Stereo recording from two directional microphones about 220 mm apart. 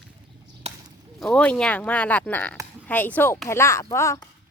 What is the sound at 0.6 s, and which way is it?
Chop, 30° right (ahead or behind).